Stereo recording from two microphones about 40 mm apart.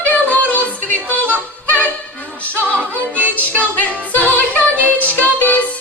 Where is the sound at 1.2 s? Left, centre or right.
Right.